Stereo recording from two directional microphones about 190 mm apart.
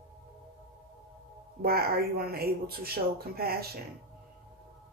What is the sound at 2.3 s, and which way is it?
Speech, 55° right (ahead or behind).